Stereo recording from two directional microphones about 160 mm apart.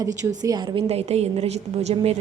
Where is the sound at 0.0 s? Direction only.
20° right (ahead or behind).